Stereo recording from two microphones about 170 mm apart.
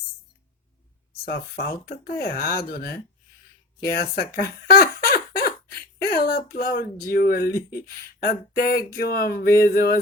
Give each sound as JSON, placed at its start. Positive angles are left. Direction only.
{"t": 1.2, "sound": "speech", "side_deg": 60}
{"t": 4.7, "sound": "fowl", "side_deg": 60}
{"t": 6.0, "sound": "speech", "side_deg": 60}